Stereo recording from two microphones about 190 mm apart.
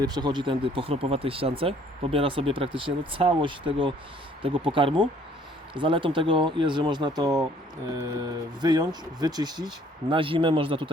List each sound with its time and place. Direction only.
0.0 s speech: 20° right (ahead or behind)
8.6 s speech: 20° right (ahead or behind)